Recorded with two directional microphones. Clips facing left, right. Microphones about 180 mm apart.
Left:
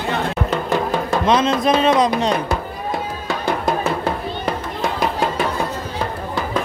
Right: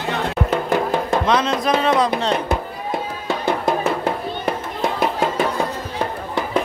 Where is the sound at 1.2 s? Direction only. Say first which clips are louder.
Left 2 dB; 20° left (ahead or behind).